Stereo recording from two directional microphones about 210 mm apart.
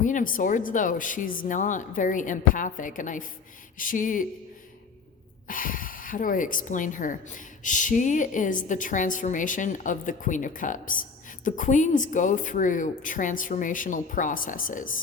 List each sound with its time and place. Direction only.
0.0 s speech: 40° left (ahead or behind)
5.5 s speech: 40° left (ahead or behind)